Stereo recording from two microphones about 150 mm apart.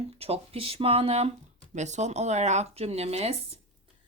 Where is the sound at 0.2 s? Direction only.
40° right (ahead or behind).